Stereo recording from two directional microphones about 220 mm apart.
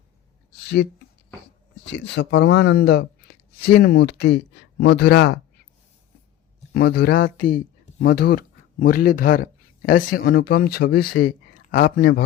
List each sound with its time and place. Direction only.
1.9 s speech: 55° left (ahead or behind)
6.7 s speech: 45° left (ahead or behind)